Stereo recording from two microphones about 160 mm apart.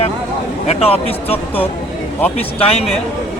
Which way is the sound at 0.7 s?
40° left (ahead or behind).